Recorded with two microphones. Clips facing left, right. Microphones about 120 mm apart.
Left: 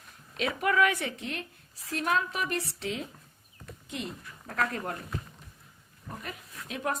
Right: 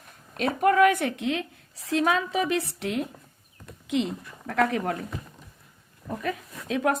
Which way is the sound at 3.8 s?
90° right.